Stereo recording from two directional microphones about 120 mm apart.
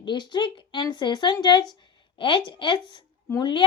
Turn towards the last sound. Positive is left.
turn(degrees=40)  # may be behind; listen again after turning